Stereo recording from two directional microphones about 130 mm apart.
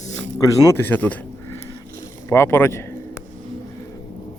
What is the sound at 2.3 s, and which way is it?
Speech, 20° left (ahead or behind).